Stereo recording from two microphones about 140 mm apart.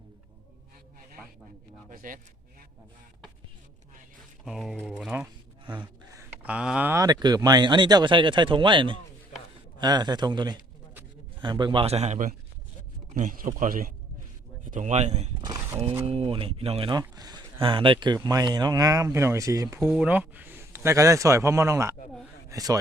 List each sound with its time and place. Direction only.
1.9 s speech: 75° right (ahead or behind)
4.4 s speech: centre (ahead or behind)
6.1 s a sound: 15° right (ahead or behind)
6.9 s a man's voice: 25° right (ahead or behind); by 12.3 s 55° right (ahead or behind)
13.1 s speech: 75° right (ahead or behind)
14.6 s speech: 65° right (ahead or behind)
15.4 s a sound: 25° right (ahead or behind)
16.0 s speech: 45° right (ahead or behind); by 19.8 s 25° right (ahead or behind)
19.8 s a man's voice: 5° right (ahead or behind); by 22.8 s 25° right (ahead or behind)